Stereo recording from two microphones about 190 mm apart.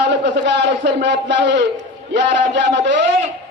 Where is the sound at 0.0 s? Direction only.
65° right (ahead or behind).